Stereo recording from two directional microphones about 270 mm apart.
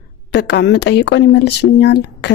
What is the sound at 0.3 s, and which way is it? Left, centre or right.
Speech, left.